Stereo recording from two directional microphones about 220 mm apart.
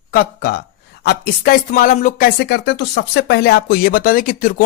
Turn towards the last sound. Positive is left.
turn(degrees=40)  # may be behind; listen again after turning